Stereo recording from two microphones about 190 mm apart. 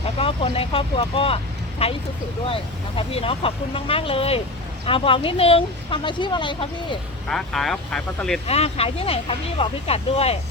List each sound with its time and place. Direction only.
0.0 s speech: 30° left (ahead or behind)
7.3 s speech: centre (ahead or behind)
8.4 s speech: 30° left (ahead or behind)